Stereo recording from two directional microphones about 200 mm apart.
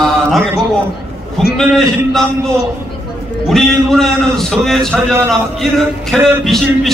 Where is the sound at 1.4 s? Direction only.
Centre (ahead or behind).